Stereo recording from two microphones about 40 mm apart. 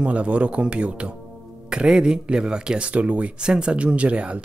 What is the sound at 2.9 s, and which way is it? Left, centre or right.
Speech, right.